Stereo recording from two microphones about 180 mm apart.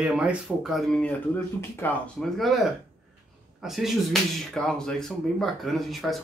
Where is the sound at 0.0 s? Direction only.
5° right (ahead or behind).